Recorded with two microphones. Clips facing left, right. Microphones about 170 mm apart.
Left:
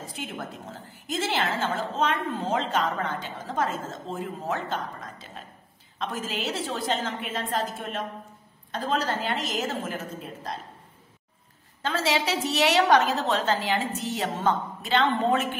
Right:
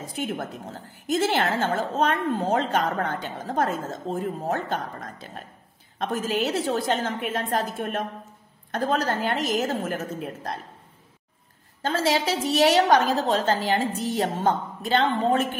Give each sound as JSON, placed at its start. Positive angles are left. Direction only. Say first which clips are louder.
{"t": 0.3, "sound": "a woman's voice", "louder": "right 5 dB", "side_deg": -50}
{"t": 11.8, "sound": "a woman's voice", "louder": "right 3 dB", "side_deg": -45}